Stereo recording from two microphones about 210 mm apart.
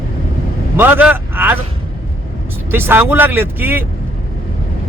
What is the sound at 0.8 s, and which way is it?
Speech, 10° right (ahead or behind).